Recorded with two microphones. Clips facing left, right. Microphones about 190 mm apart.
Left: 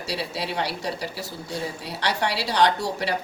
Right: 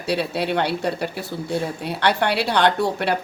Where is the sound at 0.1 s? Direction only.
60° right (ahead or behind).